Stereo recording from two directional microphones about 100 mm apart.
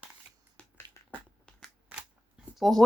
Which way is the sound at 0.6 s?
10° left (ahead or behind).